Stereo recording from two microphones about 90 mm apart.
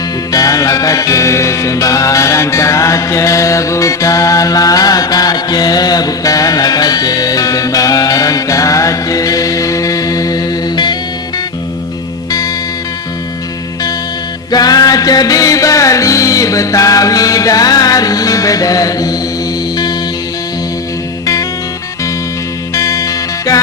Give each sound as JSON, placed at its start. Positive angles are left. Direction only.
{"t": 0.3, "sound": "music", "side_deg": 40}
{"t": 14.5, "sound": "music", "side_deg": 45}
{"t": 22.7, "sound": "music", "side_deg": 35}